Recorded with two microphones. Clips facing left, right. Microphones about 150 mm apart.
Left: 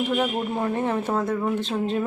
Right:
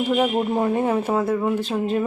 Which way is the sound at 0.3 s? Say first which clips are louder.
Right 5 dB; 25° right (ahead or behind).